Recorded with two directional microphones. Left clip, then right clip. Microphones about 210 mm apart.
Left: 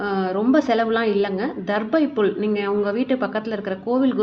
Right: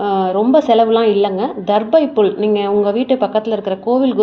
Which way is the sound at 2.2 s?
15° right (ahead or behind).